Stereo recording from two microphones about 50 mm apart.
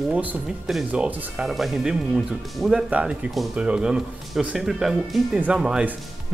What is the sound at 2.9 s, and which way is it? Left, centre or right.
A man's voice, right.